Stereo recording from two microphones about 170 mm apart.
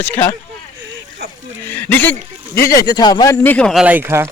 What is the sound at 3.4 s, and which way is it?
Speech, 5° left (ahead or behind).